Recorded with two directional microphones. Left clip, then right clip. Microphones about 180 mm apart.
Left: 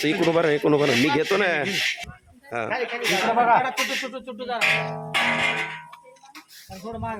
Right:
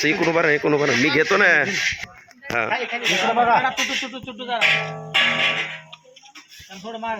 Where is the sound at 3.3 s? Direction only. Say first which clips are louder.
Right 1 dB; 45° right (ahead or behind).